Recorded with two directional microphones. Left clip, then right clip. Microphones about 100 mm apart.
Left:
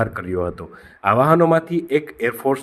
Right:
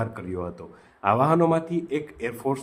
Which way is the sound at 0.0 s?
50° left (ahead or behind).